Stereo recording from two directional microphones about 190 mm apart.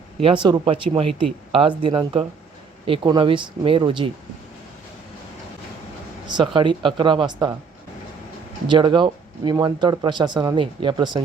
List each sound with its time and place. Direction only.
0.4 s speech: 25° right (ahead or behind)
6.2 s speech: 25° right (ahead or behind)
8.6 s speech: 25° right (ahead or behind)